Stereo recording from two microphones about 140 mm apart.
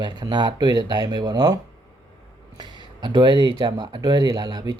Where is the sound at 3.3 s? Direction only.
35° left (ahead or behind).